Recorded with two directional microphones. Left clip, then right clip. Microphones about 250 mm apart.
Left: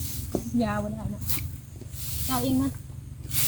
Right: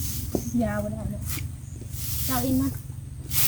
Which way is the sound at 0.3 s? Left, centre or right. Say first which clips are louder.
Even; left.